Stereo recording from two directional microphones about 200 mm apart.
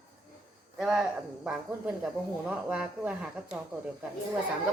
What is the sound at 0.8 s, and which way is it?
A woman's voice, centre (ahead or behind).